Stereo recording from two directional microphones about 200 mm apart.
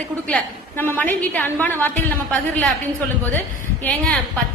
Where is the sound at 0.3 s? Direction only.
10° left (ahead or behind).